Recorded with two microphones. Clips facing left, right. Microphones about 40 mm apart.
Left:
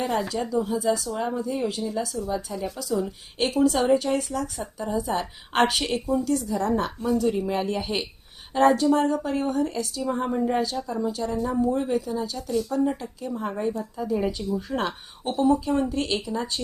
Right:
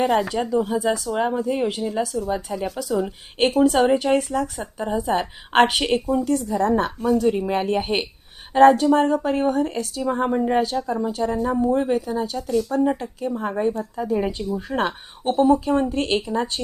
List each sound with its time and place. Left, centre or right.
0.0 s a woman's voice: right
12.8 s a woman's voice: right